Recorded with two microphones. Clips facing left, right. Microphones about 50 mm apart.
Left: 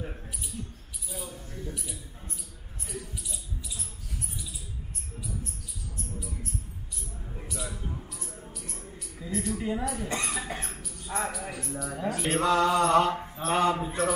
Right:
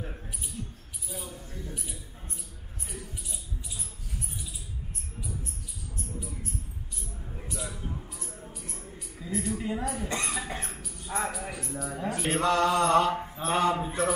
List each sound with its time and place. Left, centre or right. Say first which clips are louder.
0.0 s mouse: left 1 dB; centre
1.1 s a sound: left 1 dB; centre
1.4 s a sound: left 1 dB; centre
1.7 s mouse: left 1 dB; centre
2.9 s a sound: left 3 dB; centre
7.2 s music: left 1 dB; centre
7.4 s a sound: even; centre
9.6 s a woman's voice: left 1 dB; centre
10.0 s mantra: even; centre
10.3 s cough: even; centre
10.9 s speech: even; centre
12.6 s mantra: even; centre
13.1 s mantra: right 1 dB; centre
13.5 s a man's voice: left 1 dB; left